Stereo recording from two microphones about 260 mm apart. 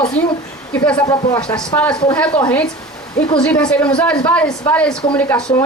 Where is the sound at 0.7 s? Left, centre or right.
Centre.